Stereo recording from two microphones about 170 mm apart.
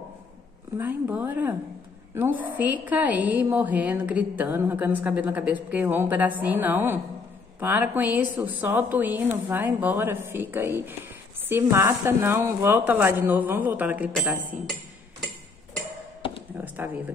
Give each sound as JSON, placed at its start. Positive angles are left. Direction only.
{"t": 0.7, "sound": "a woman's voice", "side_deg": -10}
{"t": 16.5, "sound": "a woman's voice", "side_deg": -10}